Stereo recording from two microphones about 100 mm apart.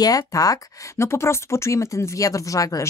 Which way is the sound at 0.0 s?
35° left (ahead or behind).